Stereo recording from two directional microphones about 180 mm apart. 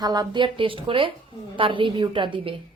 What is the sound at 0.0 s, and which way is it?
Speech, 20° right (ahead or behind).